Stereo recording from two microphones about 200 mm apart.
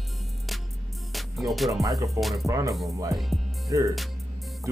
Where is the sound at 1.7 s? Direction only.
15° right (ahead or behind).